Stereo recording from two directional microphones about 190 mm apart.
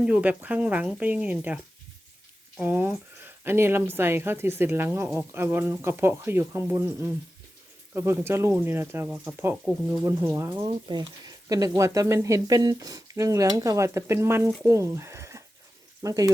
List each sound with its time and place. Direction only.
0.0 s speech: 5° right (ahead or behind)
2.6 s speech: 10° right (ahead or behind)